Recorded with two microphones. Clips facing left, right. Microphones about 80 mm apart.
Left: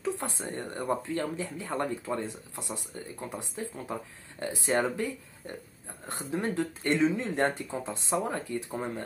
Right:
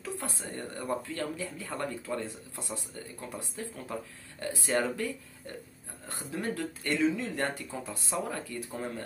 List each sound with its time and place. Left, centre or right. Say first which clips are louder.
0.0 s speech: left 5 dB; left